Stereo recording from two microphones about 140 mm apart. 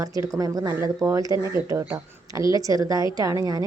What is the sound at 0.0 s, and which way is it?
A woman's voice, 25° right (ahead or behind).